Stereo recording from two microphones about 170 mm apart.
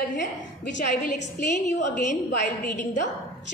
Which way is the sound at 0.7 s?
45° left (ahead or behind).